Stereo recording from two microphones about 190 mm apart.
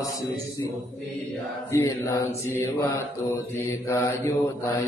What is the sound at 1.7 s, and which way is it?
Mantra, 15° left (ahead or behind).